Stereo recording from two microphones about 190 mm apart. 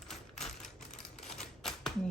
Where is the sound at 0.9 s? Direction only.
40° left (ahead or behind).